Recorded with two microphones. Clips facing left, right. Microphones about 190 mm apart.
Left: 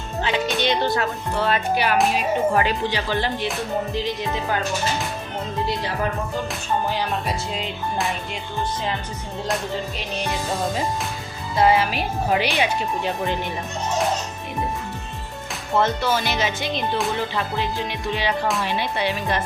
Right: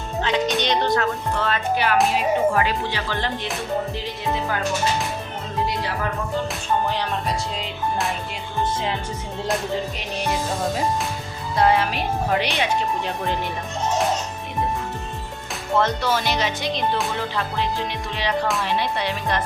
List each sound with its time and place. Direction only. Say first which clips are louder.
0.2 s speech: right 1 dB; 5° left (ahead or behind)
11.5 s music: left 1 dB; 5° left (ahead or behind)
15.8 s music: left 1 dB; centre (ahead or behind)